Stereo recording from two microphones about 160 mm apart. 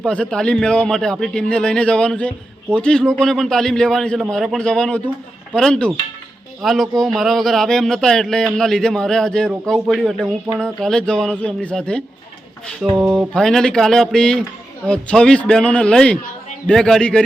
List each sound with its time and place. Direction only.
0.0 s a man's voice: 5° left (ahead or behind)